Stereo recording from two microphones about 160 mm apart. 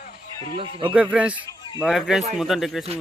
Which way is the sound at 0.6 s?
35° right (ahead or behind).